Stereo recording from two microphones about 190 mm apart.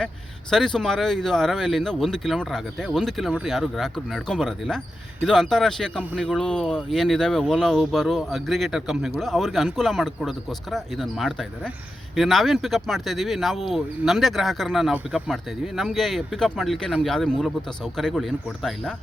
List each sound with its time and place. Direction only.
0.5 s speech: centre (ahead or behind)